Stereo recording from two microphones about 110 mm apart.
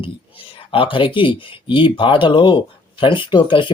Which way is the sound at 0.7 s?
50° left (ahead or behind).